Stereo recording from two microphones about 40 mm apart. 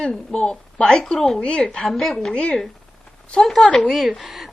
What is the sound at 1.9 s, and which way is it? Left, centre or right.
Speech, centre.